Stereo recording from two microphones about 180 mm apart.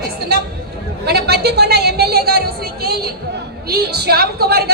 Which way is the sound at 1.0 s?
65° right (ahead or behind).